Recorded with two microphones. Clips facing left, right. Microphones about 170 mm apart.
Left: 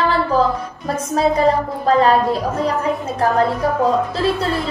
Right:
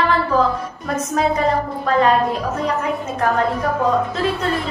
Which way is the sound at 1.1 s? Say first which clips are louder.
Left 3 dB; 35° left (ahead or behind).